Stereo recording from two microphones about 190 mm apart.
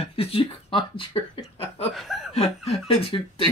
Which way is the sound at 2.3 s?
30° left (ahead or behind).